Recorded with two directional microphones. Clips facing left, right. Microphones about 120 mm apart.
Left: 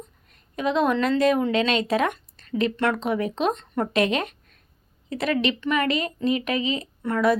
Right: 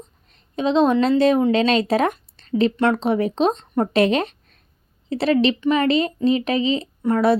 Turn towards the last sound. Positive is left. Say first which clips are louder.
# right 4 dB
turn(degrees=-30)  # may be behind; listen again after turning